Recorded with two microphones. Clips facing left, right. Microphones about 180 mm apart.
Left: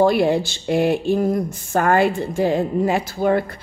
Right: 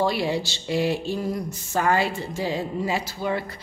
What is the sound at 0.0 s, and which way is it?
Speech, 55° left (ahead or behind).